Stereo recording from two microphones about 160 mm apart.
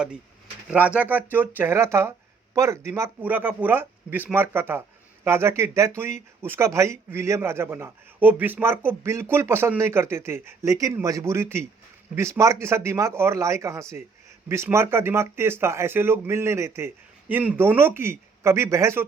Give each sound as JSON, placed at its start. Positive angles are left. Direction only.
{"t": 0.7, "sound": "speech", "side_deg": -10}